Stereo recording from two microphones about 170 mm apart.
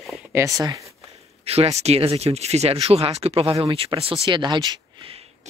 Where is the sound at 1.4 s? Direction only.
35° right (ahead or behind).